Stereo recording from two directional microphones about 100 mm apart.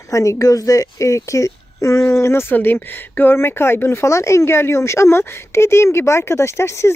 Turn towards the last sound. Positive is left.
turn(degrees=30)  # may be behind; listen again after turning